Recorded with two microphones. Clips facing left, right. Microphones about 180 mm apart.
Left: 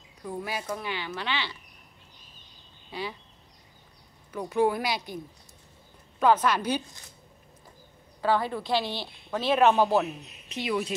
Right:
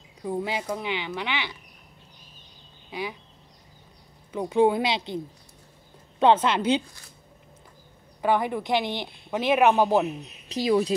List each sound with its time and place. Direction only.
0.3 s speech: 25° right (ahead or behind)
2.9 s speech: 15° right (ahead or behind)
4.6 s speech: 25° right (ahead or behind)
8.2 s a woman's voice: 15° right (ahead or behind)
10.5 s speech: 35° right (ahead or behind)